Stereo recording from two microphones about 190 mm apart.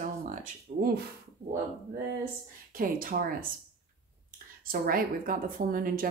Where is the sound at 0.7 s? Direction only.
45° right (ahead or behind).